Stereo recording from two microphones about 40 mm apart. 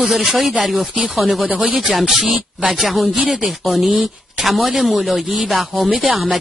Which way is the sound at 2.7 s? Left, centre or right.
Centre.